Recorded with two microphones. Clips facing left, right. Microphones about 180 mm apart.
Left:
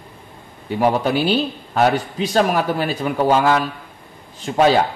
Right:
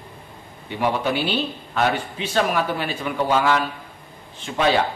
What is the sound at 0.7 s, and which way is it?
A man's voice, 40° left (ahead or behind).